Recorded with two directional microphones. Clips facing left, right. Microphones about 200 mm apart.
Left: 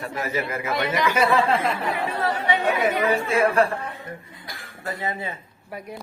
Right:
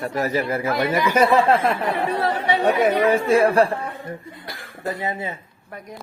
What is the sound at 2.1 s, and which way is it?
Speech, 35° right (ahead or behind).